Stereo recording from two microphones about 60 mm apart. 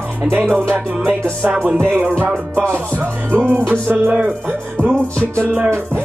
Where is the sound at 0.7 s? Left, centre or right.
Right.